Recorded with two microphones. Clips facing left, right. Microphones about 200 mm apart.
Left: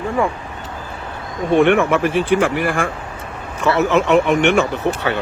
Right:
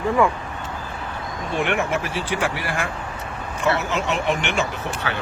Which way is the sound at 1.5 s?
60° left (ahead or behind).